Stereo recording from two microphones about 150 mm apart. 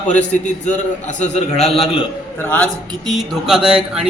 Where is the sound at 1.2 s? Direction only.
45° left (ahead or behind).